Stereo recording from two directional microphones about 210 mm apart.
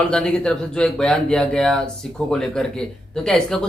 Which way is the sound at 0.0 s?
5° left (ahead or behind).